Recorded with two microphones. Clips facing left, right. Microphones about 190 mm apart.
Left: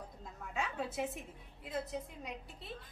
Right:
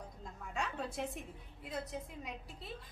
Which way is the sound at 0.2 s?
Centre (ahead or behind).